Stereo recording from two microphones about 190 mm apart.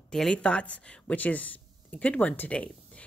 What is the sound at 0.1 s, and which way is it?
Speech, 5° left (ahead or behind).